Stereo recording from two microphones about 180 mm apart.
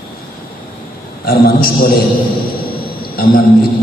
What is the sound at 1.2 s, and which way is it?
Speech, 55° left (ahead or behind).